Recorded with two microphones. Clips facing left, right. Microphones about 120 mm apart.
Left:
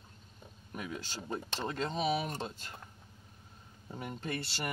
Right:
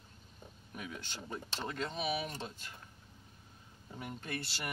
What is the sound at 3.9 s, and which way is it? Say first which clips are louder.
Speech: left 3 dB; 35° left (ahead or behind).